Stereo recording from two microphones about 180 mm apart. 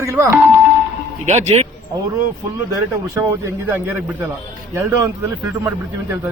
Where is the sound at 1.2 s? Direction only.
40° right (ahead or behind).